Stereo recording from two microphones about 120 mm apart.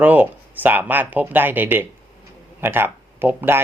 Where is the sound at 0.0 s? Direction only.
15° right (ahead or behind).